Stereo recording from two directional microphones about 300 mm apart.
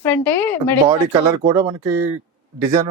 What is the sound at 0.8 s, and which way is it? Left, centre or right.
Speech, centre.